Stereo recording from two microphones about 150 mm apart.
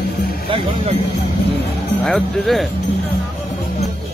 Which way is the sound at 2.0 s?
Centre (ahead or behind).